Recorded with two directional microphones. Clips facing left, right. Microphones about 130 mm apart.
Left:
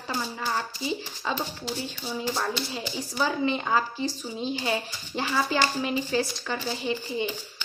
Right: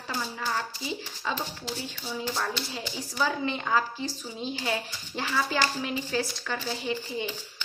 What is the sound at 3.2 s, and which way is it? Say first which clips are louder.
Speech: left 2 dB; 25° left (ahead or behind).